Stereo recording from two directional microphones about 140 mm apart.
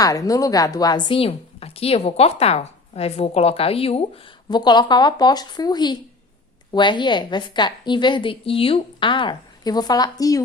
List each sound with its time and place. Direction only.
0.0 s a woman's voice: 25° left (ahead or behind); by 4.2 s 45° left (ahead or behind)
4.4 s a woman's voice: 30° left (ahead or behind)